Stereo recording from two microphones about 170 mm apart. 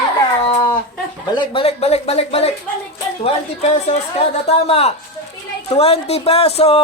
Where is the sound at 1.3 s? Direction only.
30° left (ahead or behind).